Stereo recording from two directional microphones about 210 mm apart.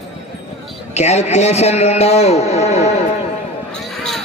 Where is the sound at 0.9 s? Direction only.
30° left (ahead or behind).